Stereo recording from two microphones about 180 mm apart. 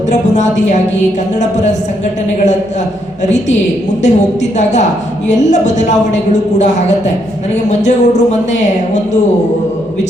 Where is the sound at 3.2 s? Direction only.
40° left (ahead or behind).